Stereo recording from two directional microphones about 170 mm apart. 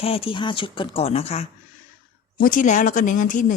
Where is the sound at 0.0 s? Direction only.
35° left (ahead or behind).